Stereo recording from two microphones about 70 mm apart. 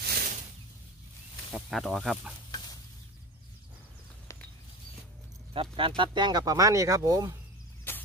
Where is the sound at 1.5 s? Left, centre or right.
Centre.